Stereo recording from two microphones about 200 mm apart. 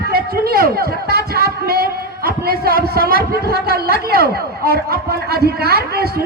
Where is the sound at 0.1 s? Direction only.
50° right (ahead or behind).